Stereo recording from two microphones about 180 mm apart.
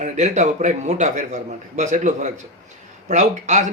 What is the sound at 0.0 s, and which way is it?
A man's voice, 40° right (ahead or behind).